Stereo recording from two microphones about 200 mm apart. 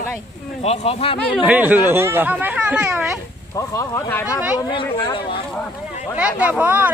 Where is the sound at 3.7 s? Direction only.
15° left (ahead or behind).